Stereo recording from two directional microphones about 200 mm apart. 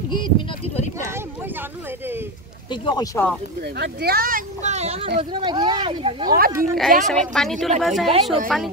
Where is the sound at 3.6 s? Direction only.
55° right (ahead or behind); by 6.3 s 25° right (ahead or behind).